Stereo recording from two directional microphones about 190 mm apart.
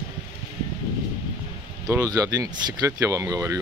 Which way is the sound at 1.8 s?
15° right (ahead or behind).